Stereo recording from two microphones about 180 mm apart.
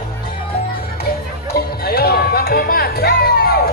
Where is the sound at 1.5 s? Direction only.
60° left (ahead or behind).